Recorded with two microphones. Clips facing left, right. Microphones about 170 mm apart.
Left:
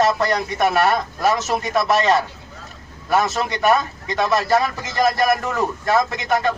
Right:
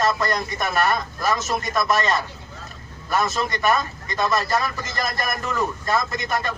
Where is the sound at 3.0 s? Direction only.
75° left (ahead or behind).